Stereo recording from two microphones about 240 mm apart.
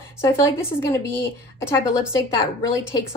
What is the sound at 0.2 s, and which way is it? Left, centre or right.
A woman's voice, centre.